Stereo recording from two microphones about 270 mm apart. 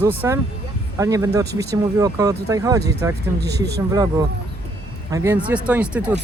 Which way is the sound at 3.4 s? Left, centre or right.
Right.